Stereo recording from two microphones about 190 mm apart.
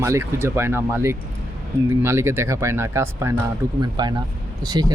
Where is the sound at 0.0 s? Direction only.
15° right (ahead or behind).